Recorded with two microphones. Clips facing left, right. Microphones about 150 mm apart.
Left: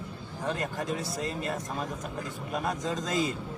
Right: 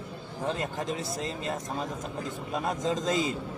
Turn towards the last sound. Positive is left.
turn(degrees=-25)  # may be behind; listen again after turning